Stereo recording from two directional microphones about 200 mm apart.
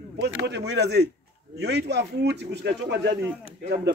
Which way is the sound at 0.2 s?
60° right (ahead or behind).